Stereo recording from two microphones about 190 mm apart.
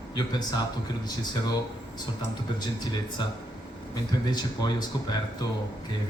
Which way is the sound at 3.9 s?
20° left (ahead or behind).